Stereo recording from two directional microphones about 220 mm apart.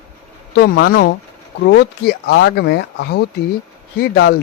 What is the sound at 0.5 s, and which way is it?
Speech, 45° left (ahead or behind).